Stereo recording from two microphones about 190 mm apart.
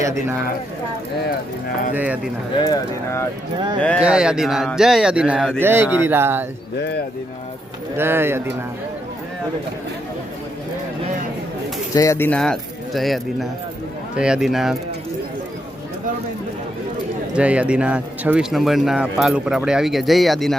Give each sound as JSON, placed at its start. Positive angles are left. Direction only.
{"t": 0.0, "sound": "speech", "side_deg": -15}
{"t": 2.0, "sound": "speech", "side_deg": -5}
{"t": 2.6, "sound": "speech", "side_deg": 15}
{"t": 3.8, "sound": "speech", "side_deg": 5}
{"t": 6.7, "sound": "speech", "side_deg": 60}
{"t": 7.9, "sound": "speech", "side_deg": -10}
{"t": 11.9, "sound": "speech", "side_deg": 15}
{"t": 17.3, "sound": "speech", "side_deg": -5}